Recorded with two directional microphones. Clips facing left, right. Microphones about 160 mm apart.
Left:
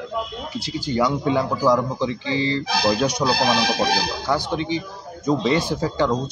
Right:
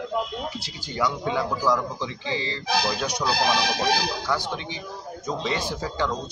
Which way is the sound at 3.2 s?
35° left (ahead or behind).